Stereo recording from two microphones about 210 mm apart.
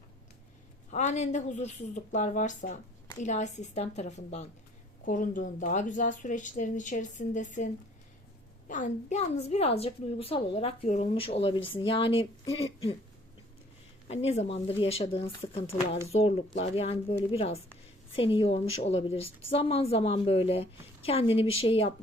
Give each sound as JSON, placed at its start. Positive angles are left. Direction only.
{"t": 0.9, "sound": "a woman's voice", "side_deg": 35}
{"t": 14.1, "sound": "a woman's voice", "side_deg": 30}